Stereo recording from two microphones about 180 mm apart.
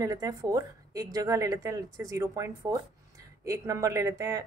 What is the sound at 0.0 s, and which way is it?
A woman's voice, 20° right (ahead or behind).